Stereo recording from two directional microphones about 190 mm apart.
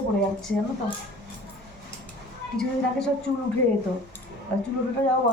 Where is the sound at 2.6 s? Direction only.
Centre (ahead or behind).